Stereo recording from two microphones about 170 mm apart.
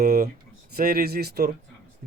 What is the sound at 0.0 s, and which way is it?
Speech, 55° right (ahead or behind).